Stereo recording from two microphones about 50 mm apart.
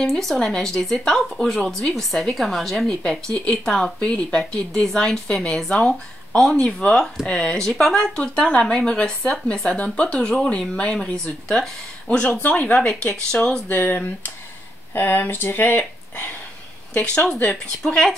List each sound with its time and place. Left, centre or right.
0.0 s a woman's voice: centre
4.0 s speech: left
4.4 s a woman's voice: centre
7.9 s speech: centre
11.5 s speech: centre
12.4 s speech: left
13.1 s a woman's voice: centre
13.7 s speech: left
16.9 s speech: left
17.8 s a woman's voice: centre